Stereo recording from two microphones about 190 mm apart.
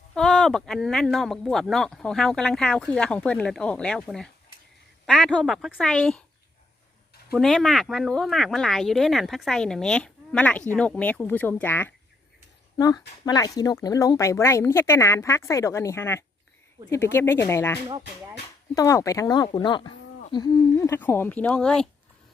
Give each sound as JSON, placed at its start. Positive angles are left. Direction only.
{"t": 0.1, "sound": "speech", "side_deg": 5}
{"t": 7.3, "sound": "speech", "side_deg": 0}
{"t": 12.7, "sound": "speech", "side_deg": 20}